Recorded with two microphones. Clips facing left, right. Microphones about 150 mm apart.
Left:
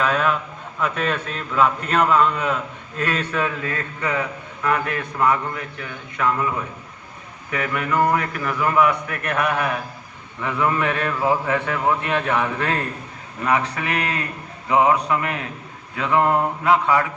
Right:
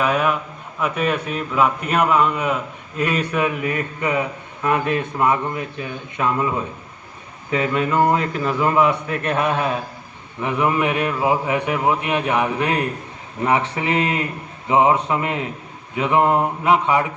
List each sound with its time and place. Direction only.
0.0 s a man's voice: 10° right (ahead or behind)